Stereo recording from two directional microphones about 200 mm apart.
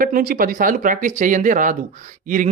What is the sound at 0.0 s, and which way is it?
A man's voice, 45° right (ahead or behind).